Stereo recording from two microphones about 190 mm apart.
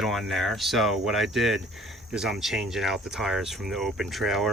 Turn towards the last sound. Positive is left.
turn(degrees=0)  # may be behind; listen again after turning